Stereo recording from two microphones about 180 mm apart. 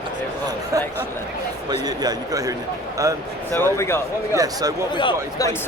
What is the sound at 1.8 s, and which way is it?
A man's voice, 20° right (ahead or behind).